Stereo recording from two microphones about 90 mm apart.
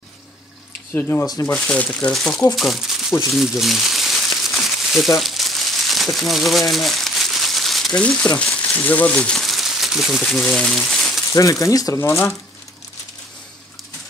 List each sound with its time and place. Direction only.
0.9 s speech: 25° left (ahead or behind)
1.2 s speech: 45° left (ahead or behind)
1.9 s speech: 10° left (ahead or behind)
3.3 s crumpling: 5° right (ahead or behind)
8.0 s speech: 10° left (ahead or behind)
11.6 s speech: 40° left (ahead or behind)
12.0 s speech: 30° left (ahead or behind)